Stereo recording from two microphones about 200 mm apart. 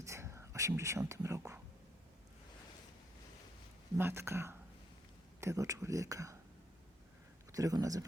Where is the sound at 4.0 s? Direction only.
10° right (ahead or behind).